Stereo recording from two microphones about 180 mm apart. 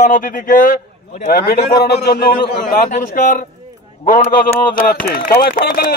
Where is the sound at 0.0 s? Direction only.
50° left (ahead or behind).